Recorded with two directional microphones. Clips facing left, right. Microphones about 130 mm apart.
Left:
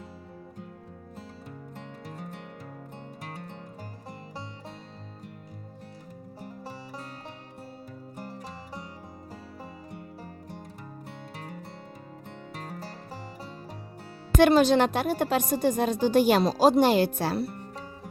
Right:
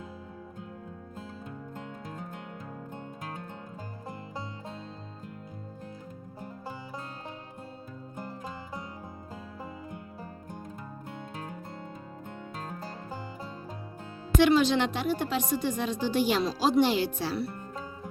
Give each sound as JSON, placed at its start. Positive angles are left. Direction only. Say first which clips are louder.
{"t": 14.3, "sound": "a woman's voice", "louder": "left 3 dB", "side_deg": 45}